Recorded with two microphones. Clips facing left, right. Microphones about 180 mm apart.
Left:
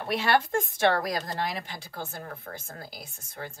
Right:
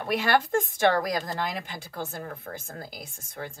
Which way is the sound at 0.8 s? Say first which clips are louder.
Right 1 dB; 50° right (ahead or behind).